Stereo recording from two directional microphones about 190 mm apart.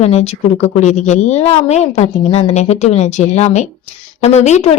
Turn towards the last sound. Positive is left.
turn(degrees=35)  # may be behind; listen again after turning